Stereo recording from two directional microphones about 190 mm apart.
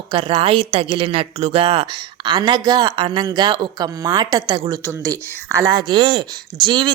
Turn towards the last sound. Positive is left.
turn(degrees=-25)  # may be behind; listen again after turning